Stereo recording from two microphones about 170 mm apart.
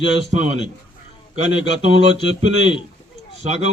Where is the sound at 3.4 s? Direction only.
40° right (ahead or behind).